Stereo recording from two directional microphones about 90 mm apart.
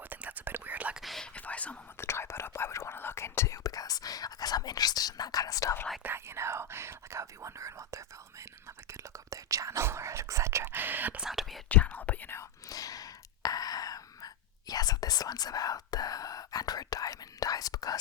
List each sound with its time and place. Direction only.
0.1 s whispering: 20° right (ahead or behind)
1.0 s whispering: centre (ahead or behind)
1.3 s whispering: 15° left (ahead or behind)
2.0 s whispering: 30° left (ahead or behind)
6.0 s whispering: 25° right (ahead or behind)
11.2 s whispering: 5° right (ahead or behind)
11.7 s whispering: 15° left (ahead or behind)
12.4 s whispering: 40° left (ahead or behind)